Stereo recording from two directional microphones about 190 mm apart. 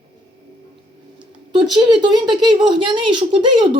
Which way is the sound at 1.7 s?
25° right (ahead or behind).